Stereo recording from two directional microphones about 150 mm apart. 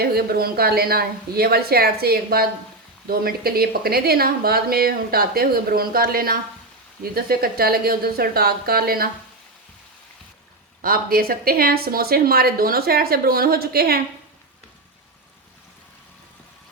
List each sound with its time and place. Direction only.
0.0 s speech: 90° right
7.0 s speech: 90° right
10.8 s speech: 80° right